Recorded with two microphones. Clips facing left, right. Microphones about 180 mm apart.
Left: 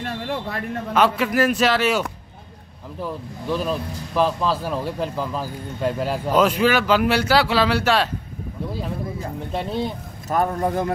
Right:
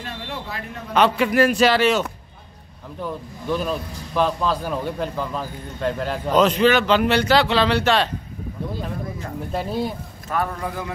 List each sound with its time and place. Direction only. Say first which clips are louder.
0.9 s speech: right 2 dB; centre (ahead or behind)
10.3 s a man's voice: left 5 dB; 40° left (ahead or behind)